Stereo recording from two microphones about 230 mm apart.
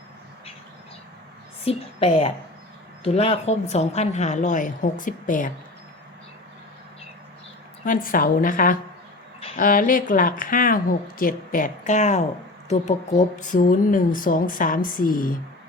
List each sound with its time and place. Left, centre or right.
1.6 s a woman's voice: left
7.9 s speech: left